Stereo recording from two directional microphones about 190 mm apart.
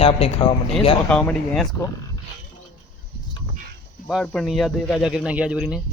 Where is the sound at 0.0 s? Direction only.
30° left (ahead or behind).